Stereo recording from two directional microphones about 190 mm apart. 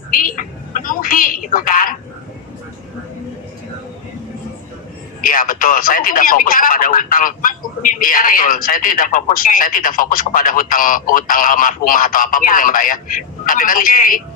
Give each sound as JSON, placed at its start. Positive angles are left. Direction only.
{"t": 0.1, "sound": "speech", "side_deg": 45}
{"t": 5.2, "sound": "speech", "side_deg": 45}